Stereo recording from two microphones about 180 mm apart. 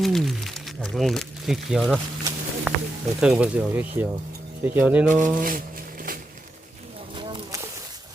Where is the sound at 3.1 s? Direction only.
5° right (ahead or behind).